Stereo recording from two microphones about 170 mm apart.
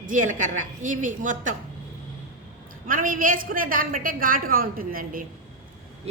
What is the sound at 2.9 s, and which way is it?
A woman's voice, 55° right (ahead or behind).